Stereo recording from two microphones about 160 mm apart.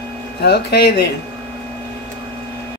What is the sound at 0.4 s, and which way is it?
Speech, 90° left.